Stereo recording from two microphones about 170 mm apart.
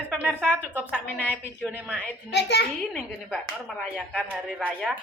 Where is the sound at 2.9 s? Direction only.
Centre (ahead or behind).